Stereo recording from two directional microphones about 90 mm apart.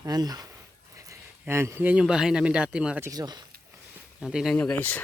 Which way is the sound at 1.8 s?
10° right (ahead or behind).